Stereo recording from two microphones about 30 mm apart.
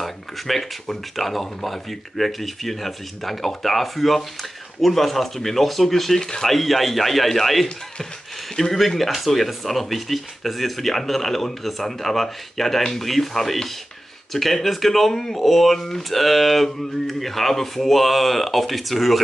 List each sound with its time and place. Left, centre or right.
0.0 s speech: centre
6.2 s speech: centre
6.5 s speech: centre